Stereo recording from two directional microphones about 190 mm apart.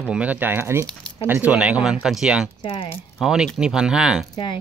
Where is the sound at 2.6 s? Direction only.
30° left (ahead or behind).